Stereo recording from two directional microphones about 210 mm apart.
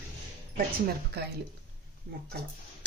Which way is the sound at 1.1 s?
50° right (ahead or behind).